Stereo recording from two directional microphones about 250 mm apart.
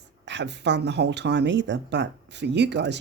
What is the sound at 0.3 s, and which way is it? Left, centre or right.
Speech, right.